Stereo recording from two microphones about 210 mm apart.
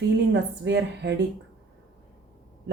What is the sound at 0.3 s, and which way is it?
Speech, 55° right (ahead or behind).